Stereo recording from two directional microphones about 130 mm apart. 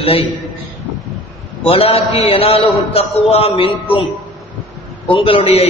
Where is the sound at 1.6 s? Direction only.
50° left (ahead or behind).